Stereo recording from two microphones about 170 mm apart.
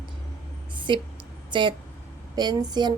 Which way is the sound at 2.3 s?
25° right (ahead or behind).